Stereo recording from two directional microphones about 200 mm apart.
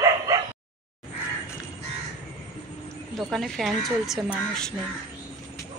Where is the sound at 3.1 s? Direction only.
Centre (ahead or behind).